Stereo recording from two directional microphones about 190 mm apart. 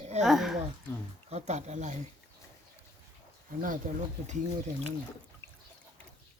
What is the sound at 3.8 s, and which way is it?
Speech, 40° right (ahead or behind).